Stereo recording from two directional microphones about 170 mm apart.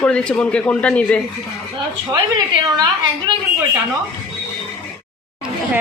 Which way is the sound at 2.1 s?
25° right (ahead or behind).